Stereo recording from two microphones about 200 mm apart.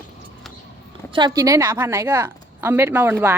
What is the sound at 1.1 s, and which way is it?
A woman's voice, 20° right (ahead or behind).